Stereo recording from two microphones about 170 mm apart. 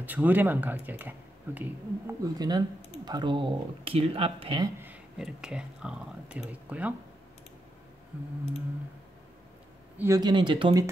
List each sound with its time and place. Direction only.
0.0 s speech: 10° right (ahead or behind)
2.3 s speech: 25° right (ahead or behind)
4.8 s speech: 5° right (ahead or behind)
9.9 s speech: 20° right (ahead or behind)